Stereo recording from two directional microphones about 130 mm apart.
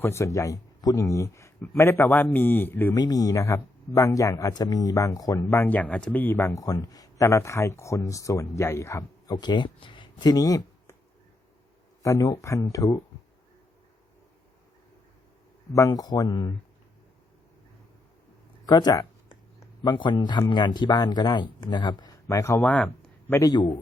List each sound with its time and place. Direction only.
0.0 s speech: 20° left (ahead or behind)
2.9 s speech: 30° left (ahead or behind)
12.0 s speech: 25° left (ahead or behind)
15.7 s speech: 25° left (ahead or behind)
18.6 s a sound: 30° left (ahead or behind)
20.5 s speech: 35° left (ahead or behind)
22.6 s speech: 10° left (ahead or behind)
23.3 s speech: 25° left (ahead or behind)